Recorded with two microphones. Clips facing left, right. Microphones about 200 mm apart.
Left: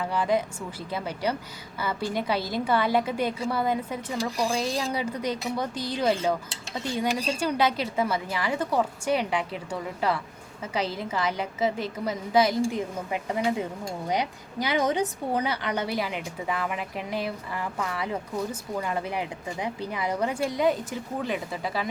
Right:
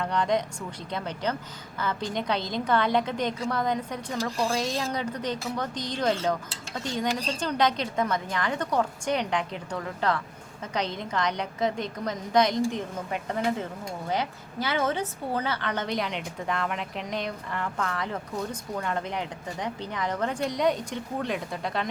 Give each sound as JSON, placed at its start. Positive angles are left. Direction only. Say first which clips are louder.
{"t": 0.0, "sound": "a woman's voice", "louder": "left 1 dB", "side_deg": 5}